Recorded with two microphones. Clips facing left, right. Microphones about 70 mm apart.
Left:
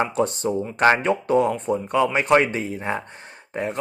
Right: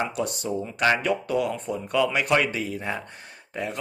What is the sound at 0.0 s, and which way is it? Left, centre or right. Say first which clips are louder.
Speech: left 6 dB; left.